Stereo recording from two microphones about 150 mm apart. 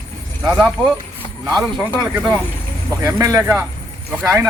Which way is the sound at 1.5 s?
Centre (ahead or behind).